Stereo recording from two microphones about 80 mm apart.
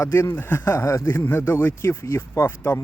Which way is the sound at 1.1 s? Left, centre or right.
Left.